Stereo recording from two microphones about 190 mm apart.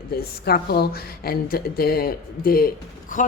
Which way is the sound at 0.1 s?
55° left (ahead or behind).